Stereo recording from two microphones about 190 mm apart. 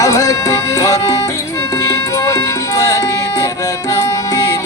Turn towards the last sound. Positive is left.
turn(degrees=20)  # may be behind; listen again after turning